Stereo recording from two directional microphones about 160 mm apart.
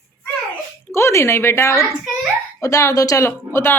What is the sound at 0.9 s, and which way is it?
Speech, 15° left (ahead or behind).